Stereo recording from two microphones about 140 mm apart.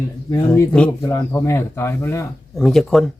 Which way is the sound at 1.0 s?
20° left (ahead or behind).